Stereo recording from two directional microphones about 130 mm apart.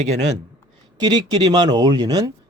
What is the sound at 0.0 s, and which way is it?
Speech, 60° right (ahead or behind).